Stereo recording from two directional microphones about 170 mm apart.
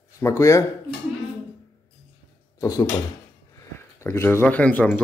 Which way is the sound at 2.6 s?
20° left (ahead or behind).